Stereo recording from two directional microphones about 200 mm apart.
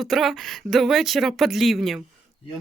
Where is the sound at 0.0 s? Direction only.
Centre (ahead or behind).